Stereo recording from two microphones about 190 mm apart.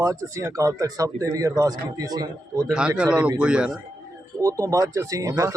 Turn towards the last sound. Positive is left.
turn(degrees=-15)  # may be behind; listen again after turning